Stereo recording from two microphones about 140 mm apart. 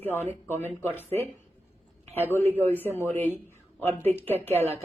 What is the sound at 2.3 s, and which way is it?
Speech, 15° left (ahead or behind).